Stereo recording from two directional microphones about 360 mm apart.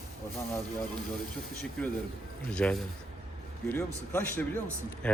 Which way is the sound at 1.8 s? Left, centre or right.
Centre.